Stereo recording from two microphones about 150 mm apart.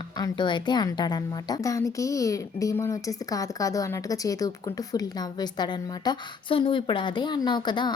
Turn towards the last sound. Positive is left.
turn(degrees=30)  # may be behind; listen again after turning